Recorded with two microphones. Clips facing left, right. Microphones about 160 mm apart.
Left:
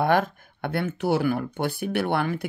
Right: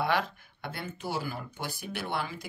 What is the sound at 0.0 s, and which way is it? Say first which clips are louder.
Speech: left 7 dB; 50° left (ahead or behind).